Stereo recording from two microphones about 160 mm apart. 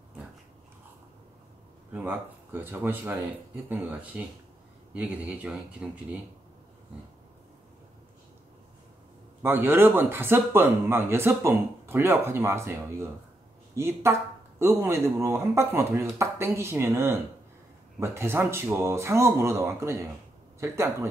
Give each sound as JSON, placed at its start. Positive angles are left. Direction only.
{"t": 1.9, "sound": "speech", "side_deg": -10}
{"t": 9.4, "sound": "speech", "side_deg": -15}
{"t": 13.7, "sound": "speech", "side_deg": -15}